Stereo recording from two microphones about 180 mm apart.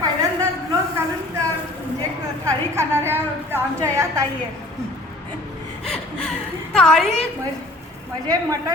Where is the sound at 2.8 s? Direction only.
15° right (ahead or behind).